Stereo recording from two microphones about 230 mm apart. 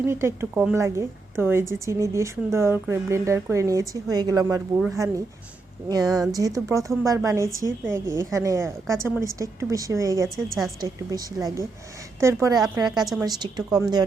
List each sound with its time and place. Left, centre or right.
0.0 s a woman's voice: centre
10.2 s speech: centre
11.1 s a woman's voice: centre
12.5 s speech: centre
13.2 s a woman's voice: centre